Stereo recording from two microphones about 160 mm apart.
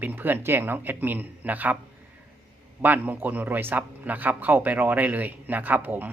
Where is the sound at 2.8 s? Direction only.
10° right (ahead or behind).